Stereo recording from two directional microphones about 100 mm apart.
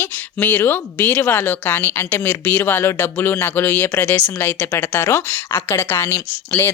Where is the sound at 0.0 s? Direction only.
20° left (ahead or behind).